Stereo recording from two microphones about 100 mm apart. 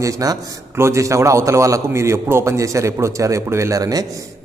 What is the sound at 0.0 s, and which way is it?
A man's voice, 35° right (ahead or behind).